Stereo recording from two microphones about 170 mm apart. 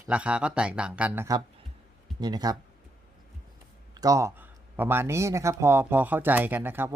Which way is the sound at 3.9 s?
20° right (ahead or behind).